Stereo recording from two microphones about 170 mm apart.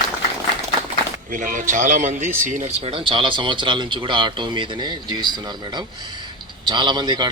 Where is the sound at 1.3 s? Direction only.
50° right (ahead or behind); by 5.2 s 25° right (ahead or behind).